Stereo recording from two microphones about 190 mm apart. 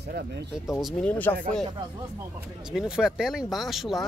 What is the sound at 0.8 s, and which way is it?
Speech, centre (ahead or behind).